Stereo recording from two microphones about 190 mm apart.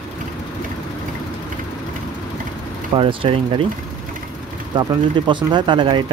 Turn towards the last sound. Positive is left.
turn(degrees=-25)  # may be behind; listen again after turning